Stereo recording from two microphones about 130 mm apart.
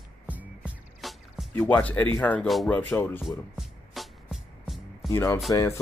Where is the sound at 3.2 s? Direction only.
Centre (ahead or behind).